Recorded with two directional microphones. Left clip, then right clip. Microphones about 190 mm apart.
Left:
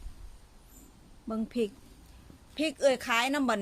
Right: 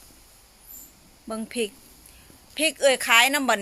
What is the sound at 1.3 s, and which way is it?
Speech, 5° left (ahead or behind).